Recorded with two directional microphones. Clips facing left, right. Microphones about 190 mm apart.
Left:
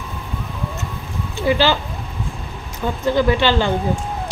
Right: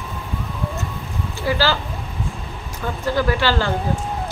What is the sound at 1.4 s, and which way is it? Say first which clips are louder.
Speech: left 4 dB; 20° left (ahead or behind).